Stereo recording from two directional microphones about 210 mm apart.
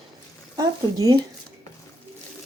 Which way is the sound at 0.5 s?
15° right (ahead or behind).